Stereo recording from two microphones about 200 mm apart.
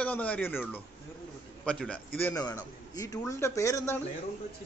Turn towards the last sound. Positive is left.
turn(degrees=15)  # may be behind; listen again after turning